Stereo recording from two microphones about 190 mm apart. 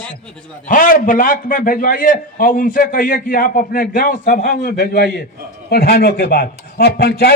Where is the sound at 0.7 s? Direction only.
45° left (ahead or behind).